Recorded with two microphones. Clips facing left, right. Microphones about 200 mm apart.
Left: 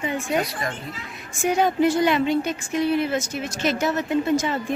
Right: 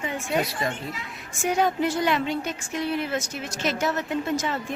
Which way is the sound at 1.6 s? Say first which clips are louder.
Left 5 dB; 5° left (ahead or behind).